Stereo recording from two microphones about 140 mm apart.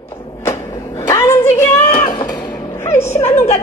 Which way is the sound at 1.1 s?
20° left (ahead or behind).